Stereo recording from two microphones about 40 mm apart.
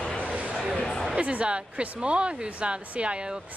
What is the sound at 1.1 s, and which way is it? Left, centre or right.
Speech, right.